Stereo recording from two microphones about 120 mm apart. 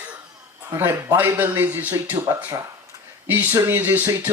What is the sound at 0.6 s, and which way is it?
Speech, 20° right (ahead or behind).